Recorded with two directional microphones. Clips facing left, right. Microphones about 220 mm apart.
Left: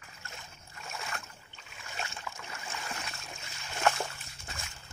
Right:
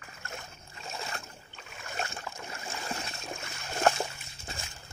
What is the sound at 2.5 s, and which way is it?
Splash, 30° right (ahead or behind).